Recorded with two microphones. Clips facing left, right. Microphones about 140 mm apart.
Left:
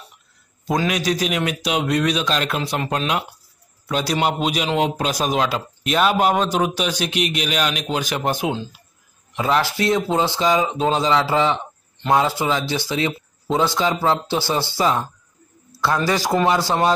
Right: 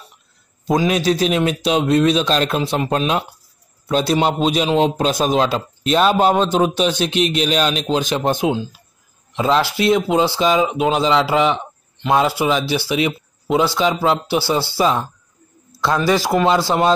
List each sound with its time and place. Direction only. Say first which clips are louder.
0.8 s a man's voice: right 5 dB; 30° right (ahead or behind)
14.6 s speech: right 3 dB; 15° left (ahead or behind)
15.8 s speech: right 3 dB; 15° right (ahead or behind)